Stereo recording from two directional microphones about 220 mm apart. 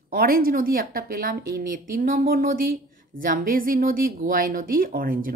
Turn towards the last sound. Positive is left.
turn(degrees=-40)  # may be behind; listen again after turning